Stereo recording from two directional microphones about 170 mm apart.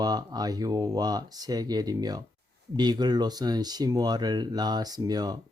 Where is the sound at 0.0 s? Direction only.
25° right (ahead or behind).